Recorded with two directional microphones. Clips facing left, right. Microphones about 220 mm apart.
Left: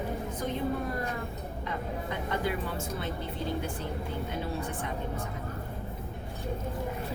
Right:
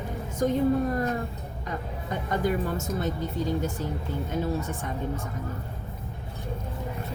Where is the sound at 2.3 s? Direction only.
45° right (ahead or behind).